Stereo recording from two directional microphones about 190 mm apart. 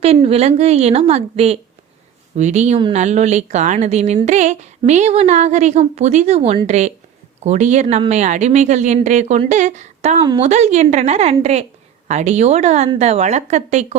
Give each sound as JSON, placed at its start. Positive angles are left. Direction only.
{"t": 0.0, "sound": "a woman's voice", "side_deg": -35}